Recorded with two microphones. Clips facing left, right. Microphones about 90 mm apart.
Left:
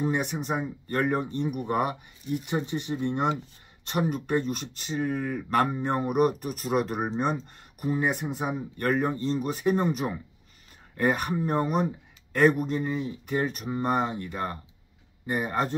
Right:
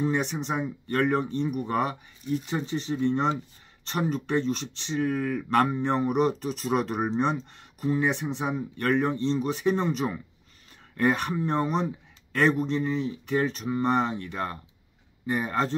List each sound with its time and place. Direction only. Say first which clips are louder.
0.0 s speech: right 1 dB; 10° left (ahead or behind)